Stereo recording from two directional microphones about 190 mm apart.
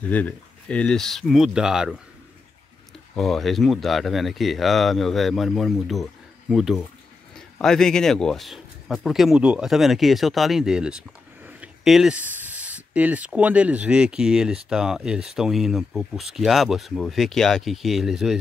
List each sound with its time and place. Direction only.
0.1 s speech: 5° left (ahead or behind)
3.2 s speech: centre (ahead or behind)